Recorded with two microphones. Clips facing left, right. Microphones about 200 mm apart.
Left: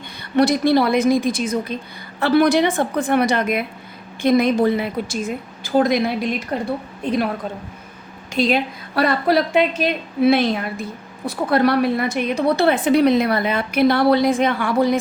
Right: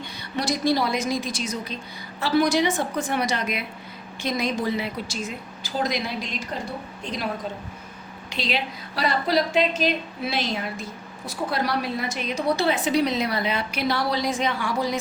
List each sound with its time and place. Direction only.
0.3 s a woman's voice: 60° left (ahead or behind)
8.3 s a woman's voice: 50° left (ahead or behind)